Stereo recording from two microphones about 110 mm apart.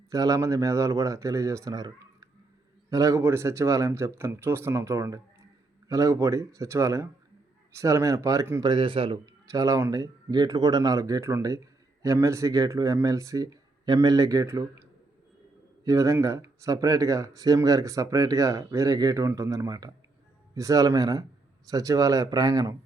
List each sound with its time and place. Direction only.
0.1 s speech: 35° right (ahead or behind)
2.9 s speech: 30° right (ahead or behind)
8.6 s speech: 50° right (ahead or behind)
9.2 s speech: 30° right (ahead or behind)
15.8 s a man's voice: 30° right (ahead or behind)